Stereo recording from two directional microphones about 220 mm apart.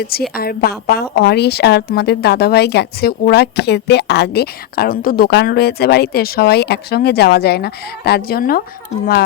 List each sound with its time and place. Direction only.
0.0 s a woman's voice: 45° left (ahead or behind)